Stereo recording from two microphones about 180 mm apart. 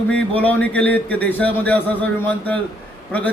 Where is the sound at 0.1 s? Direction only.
10° left (ahead or behind).